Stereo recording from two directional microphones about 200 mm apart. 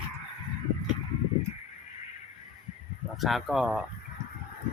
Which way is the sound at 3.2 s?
Centre (ahead or behind).